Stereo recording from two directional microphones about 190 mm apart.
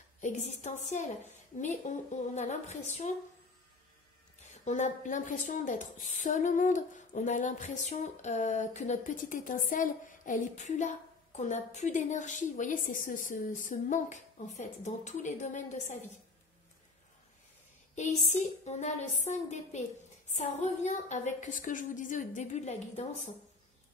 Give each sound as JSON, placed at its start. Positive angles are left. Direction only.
{"t": 0.2, "sound": "a woman's voice", "side_deg": 40}
{"t": 4.6, "sound": "a woman's voice", "side_deg": 40}
{"t": 17.9, "sound": "a woman's voice", "side_deg": 40}